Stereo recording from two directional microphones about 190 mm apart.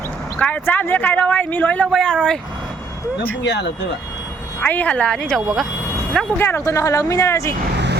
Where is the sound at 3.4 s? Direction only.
65° left (ahead or behind).